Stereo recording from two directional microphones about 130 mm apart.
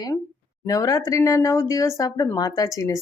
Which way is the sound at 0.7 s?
25° left (ahead or behind).